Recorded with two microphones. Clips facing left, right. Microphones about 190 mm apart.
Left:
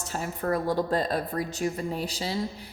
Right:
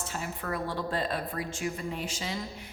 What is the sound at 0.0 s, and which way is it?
A woman's voice, 40° left (ahead or behind).